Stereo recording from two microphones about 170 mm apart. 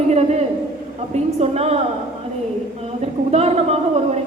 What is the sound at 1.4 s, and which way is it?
Speech, 40° right (ahead or behind).